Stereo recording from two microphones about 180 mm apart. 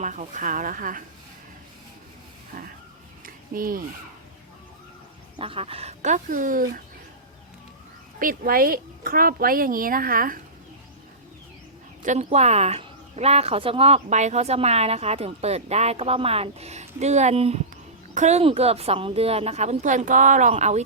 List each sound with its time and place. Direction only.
0.0 s speech: 45° right (ahead or behind)
3.2 s a sound: 50° right (ahead or behind)
5.4 s speech: 30° right (ahead or behind); by 6.8 s 50° right (ahead or behind)
8.2 s speech: 55° right (ahead or behind)
12.0 s speech: 40° right (ahead or behind)